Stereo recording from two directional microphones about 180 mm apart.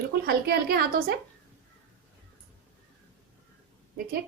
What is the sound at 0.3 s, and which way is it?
Speech, 60° right (ahead or behind).